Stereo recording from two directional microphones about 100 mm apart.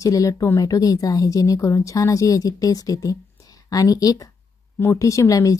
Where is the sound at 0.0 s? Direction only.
35° left (ahead or behind).